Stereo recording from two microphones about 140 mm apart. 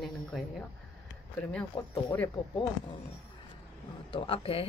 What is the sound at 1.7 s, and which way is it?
Speech, 30° left (ahead or behind).